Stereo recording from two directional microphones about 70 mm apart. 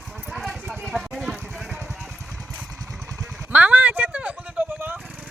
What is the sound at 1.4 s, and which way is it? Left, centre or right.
Vehicle, centre.